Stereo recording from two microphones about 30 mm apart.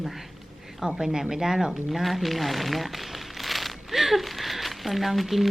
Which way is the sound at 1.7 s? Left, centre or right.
Centre.